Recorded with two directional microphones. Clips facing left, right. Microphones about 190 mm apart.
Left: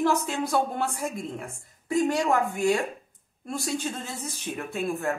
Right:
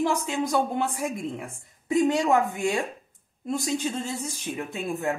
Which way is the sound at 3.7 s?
15° right (ahead or behind).